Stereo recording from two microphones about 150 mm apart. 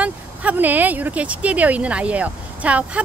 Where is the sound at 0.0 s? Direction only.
10° right (ahead or behind).